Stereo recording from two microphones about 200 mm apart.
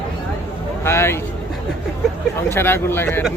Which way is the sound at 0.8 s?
10° left (ahead or behind).